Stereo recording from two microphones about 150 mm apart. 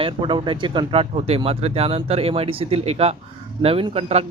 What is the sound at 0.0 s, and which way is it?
Speech, 35° right (ahead or behind).